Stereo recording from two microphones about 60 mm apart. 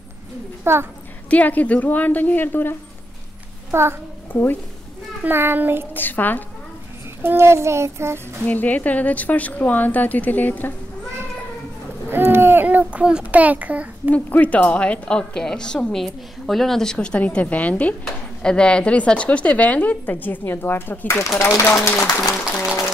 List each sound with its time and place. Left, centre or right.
0.7 s child singing: right
1.3 s speech: left
3.7 s child singing: right
4.3 s a woman's voice: left
5.2 s a child's voice: right
5.9 s a woman's voice: left
7.2 s child singing: right
8.5 s speech: left
12.1 s speech: right
12.6 s a child's voice: right
14.1 s a woman's voice: left
17.3 s speech: left
18.0 s a woman's voice: centre; by 21.8 s left